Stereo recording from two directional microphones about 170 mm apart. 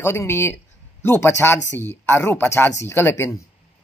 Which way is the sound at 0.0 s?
15° left (ahead or behind).